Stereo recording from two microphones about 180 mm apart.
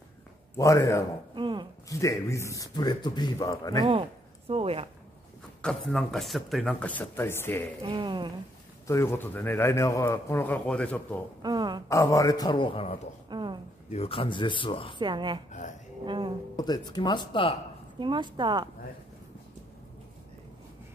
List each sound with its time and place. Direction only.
0.6 s a man's voice: 15° left (ahead or behind)
1.3 s speech: 25° right (ahead or behind)
1.9 s speech: 15° left (ahead or behind)
4.5 s speech: 30° right (ahead or behind)
5.6 s speech: 5° left (ahead or behind)
7.8 s a woman's voice: 25° right (ahead or behind)
8.8 s a man's voice: 15° left (ahead or behind)
11.4 s a woman's voice: 25° right (ahead or behind)
11.9 s speech: 15° left (ahead or behind)
13.3 s a sound: 25° right (ahead or behind)
13.8 s speech: 35° left (ahead or behind)
15.0 s a woman's voice: 25° right (ahead or behind)
16.5 s speech: 20° left (ahead or behind)
17.9 s a woman's voice: 25° right (ahead or behind)